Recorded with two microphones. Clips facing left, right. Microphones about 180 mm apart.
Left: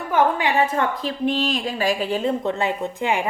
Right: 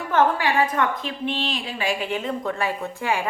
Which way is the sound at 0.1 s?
15° left (ahead or behind).